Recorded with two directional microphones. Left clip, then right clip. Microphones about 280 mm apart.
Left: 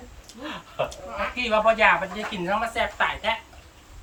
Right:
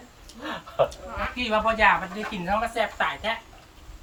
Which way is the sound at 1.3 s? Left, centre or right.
Centre.